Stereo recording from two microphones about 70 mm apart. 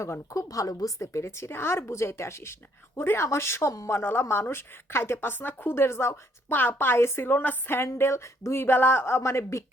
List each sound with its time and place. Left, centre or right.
0.0 s a woman's voice: left
0.4 s speech: left
3.9 s speech: left
6.5 s speech: left